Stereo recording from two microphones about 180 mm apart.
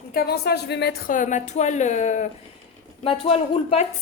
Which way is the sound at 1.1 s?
45° left (ahead or behind).